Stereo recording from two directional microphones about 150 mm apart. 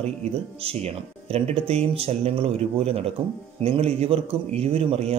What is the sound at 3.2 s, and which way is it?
Speech, 10° right (ahead or behind).